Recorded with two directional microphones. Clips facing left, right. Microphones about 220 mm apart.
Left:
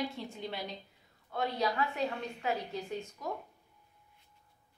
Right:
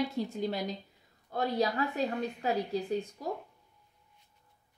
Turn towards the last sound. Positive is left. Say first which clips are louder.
# right 5 dB
turn(degrees=-35)  # may be behind; listen again after turning